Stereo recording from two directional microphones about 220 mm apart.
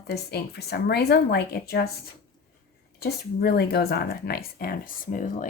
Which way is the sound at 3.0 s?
45° left (ahead or behind).